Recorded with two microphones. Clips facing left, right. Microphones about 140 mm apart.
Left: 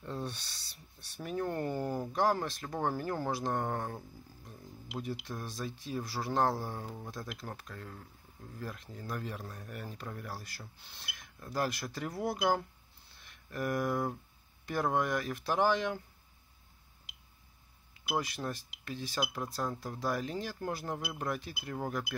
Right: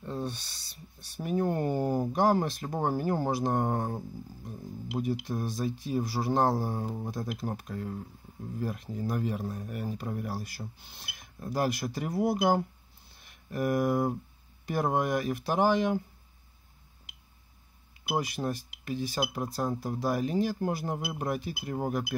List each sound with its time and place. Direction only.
0.0 s a sound: 5° right (ahead or behind)
1.1 s speech: 10° right (ahead or behind)
5.2 s speech: 15° right (ahead or behind)
18.0 s speech: 15° right (ahead or behind)